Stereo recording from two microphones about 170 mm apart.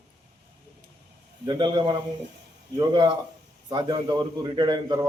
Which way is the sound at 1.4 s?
25° right (ahead or behind).